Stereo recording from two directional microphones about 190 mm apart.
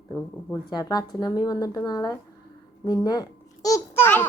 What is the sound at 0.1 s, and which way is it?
A child's voice, 20° left (ahead or behind).